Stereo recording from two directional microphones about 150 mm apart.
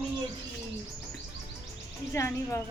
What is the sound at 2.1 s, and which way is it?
Speech, 20° left (ahead or behind).